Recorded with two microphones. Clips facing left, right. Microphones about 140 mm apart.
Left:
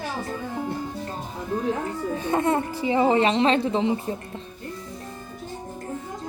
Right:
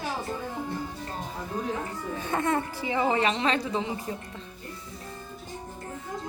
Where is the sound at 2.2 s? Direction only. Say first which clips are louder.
Left 4 dB; 20° left (ahead or behind).